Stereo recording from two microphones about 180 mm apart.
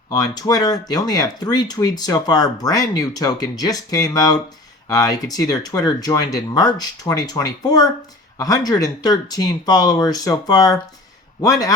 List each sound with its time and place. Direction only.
0.1 s speech: 20° left (ahead or behind)